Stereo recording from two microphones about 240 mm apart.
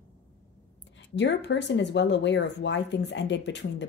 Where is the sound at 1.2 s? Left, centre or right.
Left.